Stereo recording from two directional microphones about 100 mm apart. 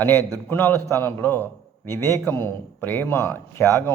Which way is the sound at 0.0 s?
20° left (ahead or behind).